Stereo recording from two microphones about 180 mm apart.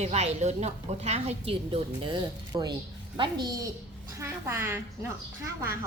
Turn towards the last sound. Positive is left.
turn(degrees=-15)  # may be behind; listen again after turning